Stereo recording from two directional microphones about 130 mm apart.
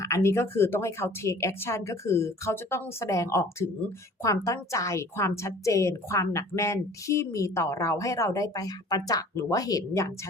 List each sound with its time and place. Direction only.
0.0 s a woman's voice: 20° left (ahead or behind)